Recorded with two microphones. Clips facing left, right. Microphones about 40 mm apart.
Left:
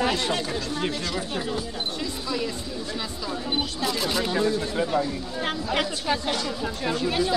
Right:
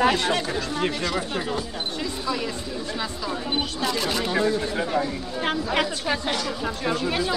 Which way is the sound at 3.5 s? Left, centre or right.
Centre.